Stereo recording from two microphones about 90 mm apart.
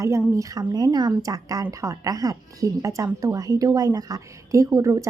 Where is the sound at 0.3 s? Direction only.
40° right (ahead or behind).